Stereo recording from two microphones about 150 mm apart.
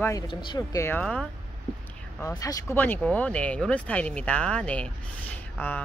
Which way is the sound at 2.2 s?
20° left (ahead or behind).